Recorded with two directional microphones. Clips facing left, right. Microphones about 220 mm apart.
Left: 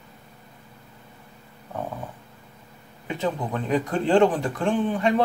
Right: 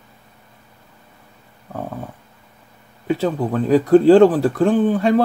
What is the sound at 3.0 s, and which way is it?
Speech, 35° right (ahead or behind).